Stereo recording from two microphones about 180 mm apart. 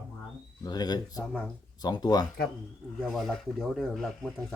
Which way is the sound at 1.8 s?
20° left (ahead or behind).